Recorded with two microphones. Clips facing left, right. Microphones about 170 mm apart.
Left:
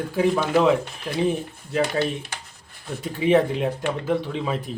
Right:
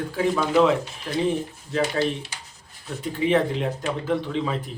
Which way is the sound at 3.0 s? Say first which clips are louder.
Left 2 dB; 15° left (ahead or behind).